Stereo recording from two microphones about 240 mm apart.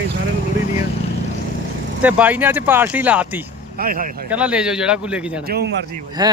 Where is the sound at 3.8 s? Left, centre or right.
Right.